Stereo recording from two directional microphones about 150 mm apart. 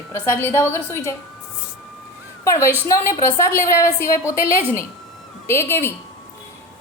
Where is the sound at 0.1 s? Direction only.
15° left (ahead or behind).